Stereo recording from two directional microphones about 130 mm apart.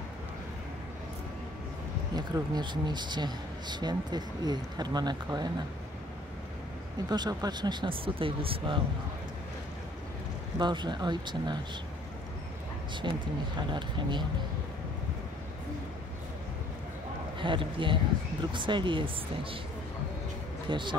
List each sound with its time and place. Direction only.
2.1 s speech: 30° right (ahead or behind)
7.1 s speech: 30° right (ahead or behind)
10.6 s speech: 35° right (ahead or behind)
13.1 s speech: 35° right (ahead or behind)
17.4 s speech: 40° right (ahead or behind)
20.7 s speech: 35° right (ahead or behind)